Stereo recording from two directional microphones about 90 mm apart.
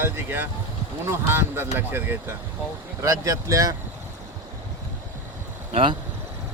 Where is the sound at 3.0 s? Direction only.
35° right (ahead or behind).